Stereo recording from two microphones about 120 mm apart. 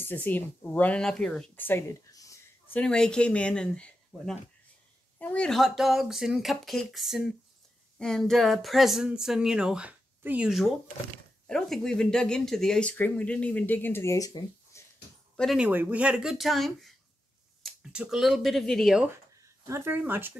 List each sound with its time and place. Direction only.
0.0 s speech: 15° left (ahead or behind)
2.7 s speech: 5° left (ahead or behind); by 10.5 s 10° right (ahead or behind)
11.4 s speech: 5° left (ahead or behind); by 14.9 s 25° left (ahead or behind)
15.5 s speech: 10° right (ahead or behind)
17.9 s speech: 5° right (ahead or behind)
19.6 s speech: 20° right (ahead or behind)